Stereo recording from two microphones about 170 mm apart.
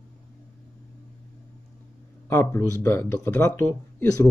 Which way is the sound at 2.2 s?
15° left (ahead or behind).